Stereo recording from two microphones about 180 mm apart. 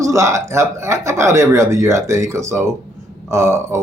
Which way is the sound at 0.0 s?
15° right (ahead or behind).